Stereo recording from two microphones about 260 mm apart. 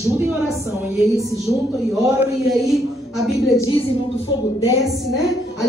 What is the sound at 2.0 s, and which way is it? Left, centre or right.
Speech, centre.